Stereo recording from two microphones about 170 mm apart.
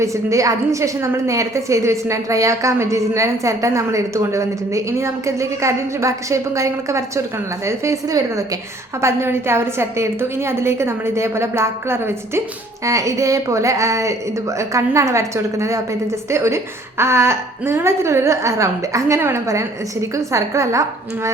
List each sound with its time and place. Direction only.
0.0 s a woman's voice: 20° right (ahead or behind)